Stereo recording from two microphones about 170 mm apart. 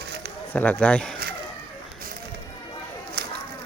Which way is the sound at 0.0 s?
75° right (ahead or behind).